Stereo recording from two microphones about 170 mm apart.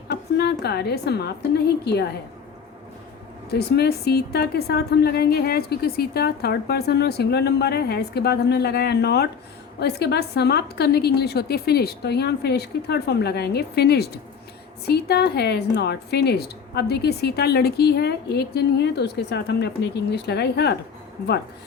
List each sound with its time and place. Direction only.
0.1 s a woman's voice: 75° left (ahead or behind)
3.5 s speech: 70° left (ahead or behind)